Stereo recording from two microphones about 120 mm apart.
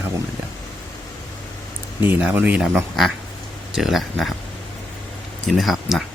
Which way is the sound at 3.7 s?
Centre (ahead or behind).